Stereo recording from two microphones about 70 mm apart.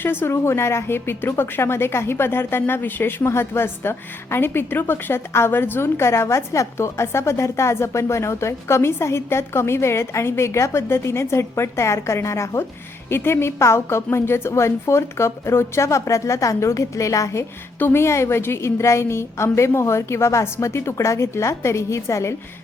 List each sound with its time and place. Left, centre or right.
0.0 s a woman's voice: left
17.7 s a woman's voice: left